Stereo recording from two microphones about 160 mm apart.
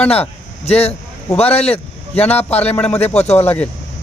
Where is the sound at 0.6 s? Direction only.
40° left (ahead or behind).